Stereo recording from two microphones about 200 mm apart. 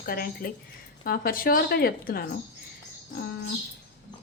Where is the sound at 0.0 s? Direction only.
45° left (ahead or behind).